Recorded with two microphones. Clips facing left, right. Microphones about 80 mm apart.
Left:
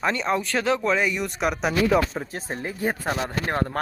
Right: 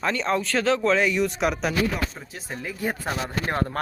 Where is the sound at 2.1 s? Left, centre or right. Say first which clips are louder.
Left 10 dB; left.